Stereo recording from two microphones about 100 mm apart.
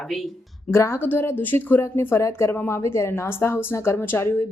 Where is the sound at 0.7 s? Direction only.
25° left (ahead or behind).